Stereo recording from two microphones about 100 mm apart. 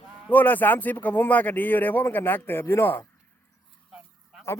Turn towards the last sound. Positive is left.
turn(degrees=25)  # may be behind; listen again after turning